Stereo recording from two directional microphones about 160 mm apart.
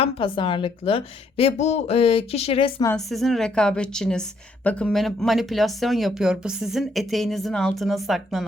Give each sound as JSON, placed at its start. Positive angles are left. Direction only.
{"t": 0.0, "sound": "a woman's voice", "side_deg": 30}
{"t": 2.9, "sound": "a woman's voice", "side_deg": 0}